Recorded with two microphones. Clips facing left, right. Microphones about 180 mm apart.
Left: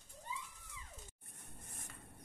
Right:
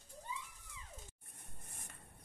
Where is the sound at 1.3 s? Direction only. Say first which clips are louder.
Left 2 dB; 65° left (ahead or behind).